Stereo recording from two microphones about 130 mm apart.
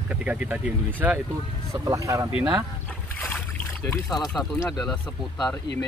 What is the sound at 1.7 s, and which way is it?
Speech, 25° right (ahead or behind).